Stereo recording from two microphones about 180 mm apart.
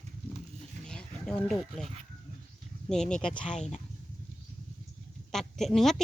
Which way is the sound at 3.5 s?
40° left (ahead or behind).